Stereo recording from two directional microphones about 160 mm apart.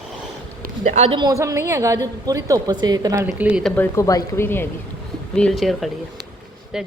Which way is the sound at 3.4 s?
10° right (ahead or behind).